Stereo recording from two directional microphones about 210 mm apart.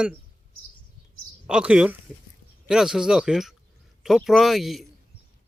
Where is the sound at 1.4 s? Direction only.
5° right (ahead or behind).